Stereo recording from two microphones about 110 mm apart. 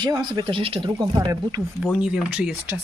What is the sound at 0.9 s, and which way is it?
Speech, 30° right (ahead or behind).